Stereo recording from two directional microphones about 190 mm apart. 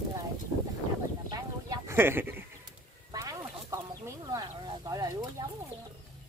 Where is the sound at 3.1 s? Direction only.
15° right (ahead or behind).